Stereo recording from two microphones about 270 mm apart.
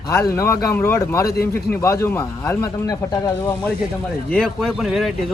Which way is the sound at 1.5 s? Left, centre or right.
Centre.